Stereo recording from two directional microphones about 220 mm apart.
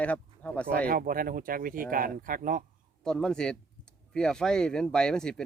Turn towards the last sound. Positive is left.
turn(degrees=5)  # may be behind; listen again after turning